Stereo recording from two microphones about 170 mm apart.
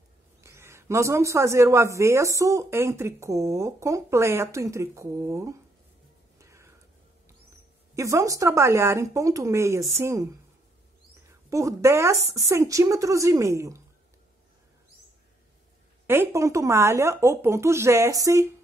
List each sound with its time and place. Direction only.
0.4 s speech: 15° right (ahead or behind)
6.3 s music: 15° right (ahead or behind)
7.9 s speech: 20° right (ahead or behind)
11.2 s a sound: 15° right (ahead or behind)
12.4 s speech: 20° right (ahead or behind)
16.1 s speech: 15° right (ahead or behind)